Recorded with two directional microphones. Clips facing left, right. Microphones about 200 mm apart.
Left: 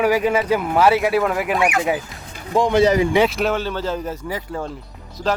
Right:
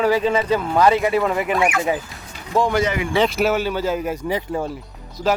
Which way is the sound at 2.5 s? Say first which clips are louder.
Left 1 dB; 15° left (ahead or behind).